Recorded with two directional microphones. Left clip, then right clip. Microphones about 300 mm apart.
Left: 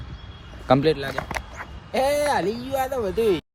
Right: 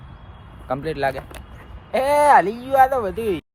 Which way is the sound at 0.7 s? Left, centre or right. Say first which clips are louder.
Left 7 dB; left.